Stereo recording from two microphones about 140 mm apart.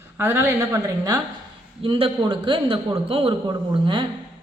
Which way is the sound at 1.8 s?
40° right (ahead or behind).